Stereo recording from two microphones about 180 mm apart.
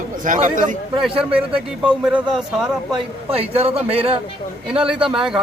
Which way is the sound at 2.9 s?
35° right (ahead or behind).